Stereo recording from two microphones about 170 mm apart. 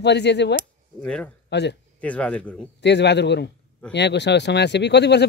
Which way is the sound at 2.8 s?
90° left.